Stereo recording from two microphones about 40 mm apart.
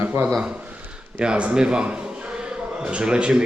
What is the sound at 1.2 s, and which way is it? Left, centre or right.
Speech, right.